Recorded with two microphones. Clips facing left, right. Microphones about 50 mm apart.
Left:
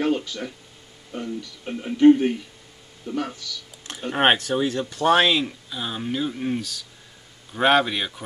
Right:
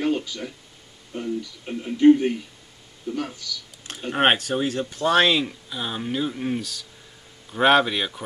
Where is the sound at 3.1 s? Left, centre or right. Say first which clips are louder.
Left 2 dB; left.